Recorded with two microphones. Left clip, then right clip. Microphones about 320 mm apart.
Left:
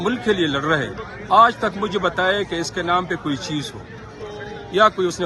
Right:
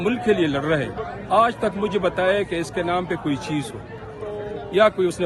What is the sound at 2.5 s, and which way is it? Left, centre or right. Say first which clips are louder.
Speech: even; right.